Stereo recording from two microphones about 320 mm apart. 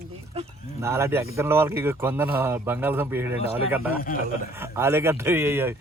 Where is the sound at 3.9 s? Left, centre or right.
Left.